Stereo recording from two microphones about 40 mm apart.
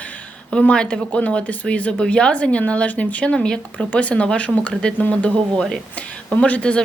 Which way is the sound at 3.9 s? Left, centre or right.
Left.